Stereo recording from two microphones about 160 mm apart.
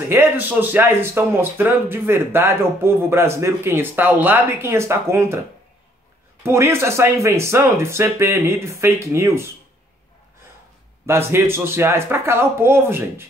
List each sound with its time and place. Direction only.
0.1 s speech: 15° right (ahead or behind)
6.4 s speech: 15° right (ahead or behind)
11.1 s speech: 15° right (ahead or behind)